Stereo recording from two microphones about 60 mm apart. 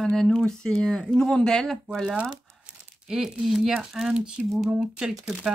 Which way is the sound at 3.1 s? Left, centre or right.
Centre.